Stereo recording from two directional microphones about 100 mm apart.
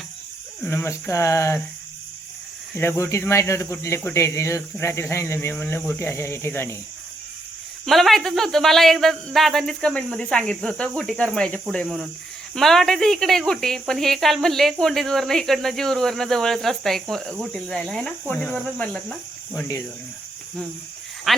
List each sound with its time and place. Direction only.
0.6 s speech: 25° left (ahead or behind)
2.7 s speech: 25° left (ahead or behind)
7.9 s speech: centre (ahead or behind)
19.5 s speech: 35° left (ahead or behind)
21.3 s speech: centre (ahead or behind)